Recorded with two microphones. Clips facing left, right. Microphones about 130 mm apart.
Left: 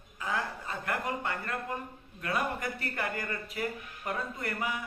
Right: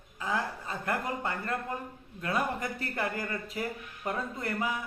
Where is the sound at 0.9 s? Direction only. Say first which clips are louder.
Right 1 dB; 30° right (ahead or behind).